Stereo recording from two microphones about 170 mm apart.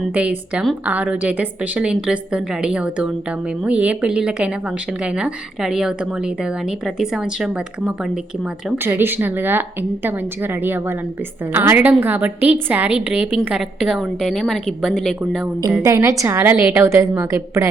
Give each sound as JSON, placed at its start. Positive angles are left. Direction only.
{"t": 0.1, "sound": "a woman's voice", "side_deg": -5}
{"t": 15.8, "sound": "a woman's voice", "side_deg": -20}